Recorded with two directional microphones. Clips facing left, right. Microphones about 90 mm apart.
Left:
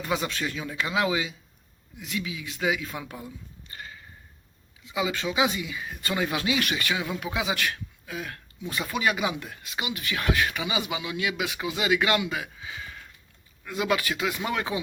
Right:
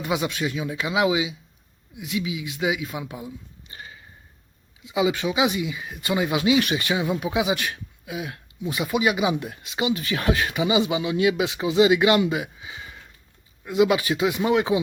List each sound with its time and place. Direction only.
0.0 s speech: 15° right (ahead or behind)
4.8 s speech: 20° right (ahead or behind)